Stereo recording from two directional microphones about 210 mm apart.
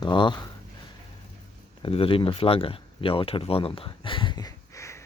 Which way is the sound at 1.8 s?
25° left (ahead or behind).